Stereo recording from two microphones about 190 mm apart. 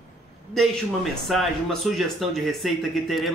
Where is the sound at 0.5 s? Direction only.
Centre (ahead or behind).